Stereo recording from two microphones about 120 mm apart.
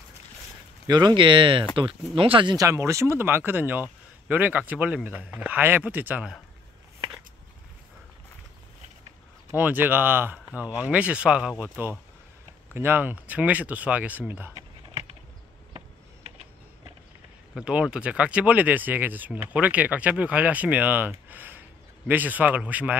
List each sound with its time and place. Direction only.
0.8 s speech: 35° right (ahead or behind)
2.5 s speech: 25° right (ahead or behind)
9.6 s speech: 15° right (ahead or behind)
17.6 s speech: 10° right (ahead or behind)